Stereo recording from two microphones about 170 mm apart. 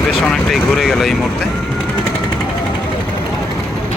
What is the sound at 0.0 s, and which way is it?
Speech, centre (ahead or behind).